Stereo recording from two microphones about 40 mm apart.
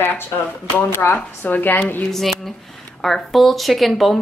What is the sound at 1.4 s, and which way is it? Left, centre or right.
Speech, left.